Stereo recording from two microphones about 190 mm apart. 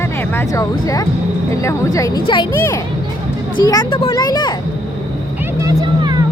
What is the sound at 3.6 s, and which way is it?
Speech, 20° left (ahead or behind).